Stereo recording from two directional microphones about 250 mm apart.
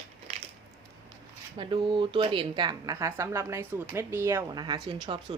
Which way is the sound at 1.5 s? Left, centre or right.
Centre.